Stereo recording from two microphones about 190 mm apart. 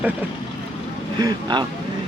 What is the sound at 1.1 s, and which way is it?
Speech, 25° right (ahead or behind).